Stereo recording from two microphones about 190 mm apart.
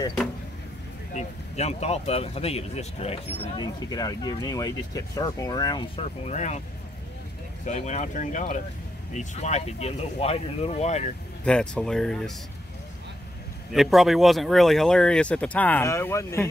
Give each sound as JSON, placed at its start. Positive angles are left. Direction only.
{"t": 1.1, "sound": "speech", "side_deg": 35}
{"t": 3.5, "sound": "speech", "side_deg": 20}
{"t": 6.2, "sound": "speech", "side_deg": 35}
{"t": 7.6, "sound": "speech", "side_deg": 40}
{"t": 11.4, "sound": "speech", "side_deg": 5}
{"t": 13.7, "sound": "speech", "side_deg": 0}